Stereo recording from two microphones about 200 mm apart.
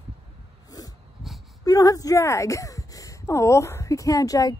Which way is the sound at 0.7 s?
20° left (ahead or behind).